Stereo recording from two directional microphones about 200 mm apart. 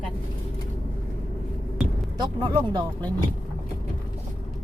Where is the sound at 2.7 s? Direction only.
20° right (ahead or behind).